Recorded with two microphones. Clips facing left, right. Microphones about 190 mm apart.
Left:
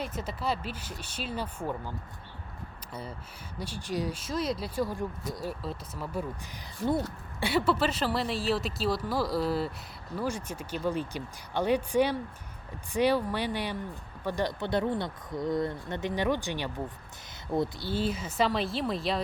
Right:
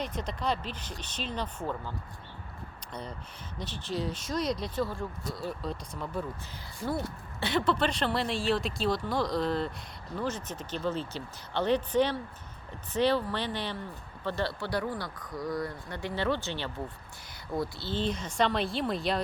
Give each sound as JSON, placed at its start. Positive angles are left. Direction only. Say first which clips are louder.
{"t": 0.0, "sound": "speech", "louder": "even", "side_deg": 5}
{"t": 2.9, "sound": "speech", "louder": "even", "side_deg": 5}
{"t": 5.5, "sound": "speech", "louder": "right 1 dB", "side_deg": 5}
{"t": 6.8, "sound": "speech", "louder": "left 4 dB", "side_deg": 15}
{"t": 17.7, "sound": "speech", "louder": "left 1 dB", "side_deg": 10}